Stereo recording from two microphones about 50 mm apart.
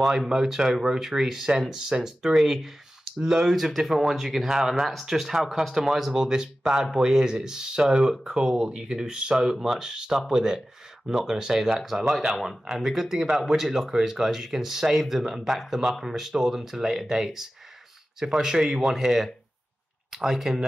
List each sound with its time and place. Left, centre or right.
0.3 s speech: centre
12.2 s speech: centre